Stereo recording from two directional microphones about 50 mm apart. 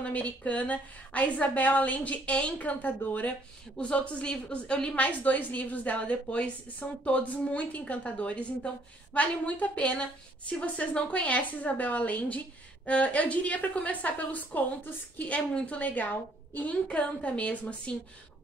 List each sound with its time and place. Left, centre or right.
0.0 s a woman's voice: left
3.7 s a woman's voice: left
4.9 s a woman's voice: left